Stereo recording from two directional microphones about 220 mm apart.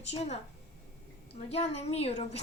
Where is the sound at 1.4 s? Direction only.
30° left (ahead or behind).